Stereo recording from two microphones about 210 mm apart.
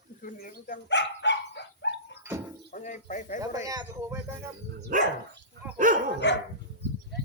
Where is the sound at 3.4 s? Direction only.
15° right (ahead or behind).